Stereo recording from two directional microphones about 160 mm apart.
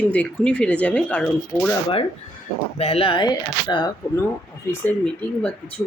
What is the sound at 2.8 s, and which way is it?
Speech, 35° left (ahead or behind).